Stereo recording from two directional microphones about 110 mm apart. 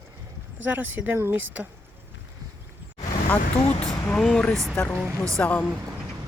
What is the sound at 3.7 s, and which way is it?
Speech, 10° left (ahead or behind).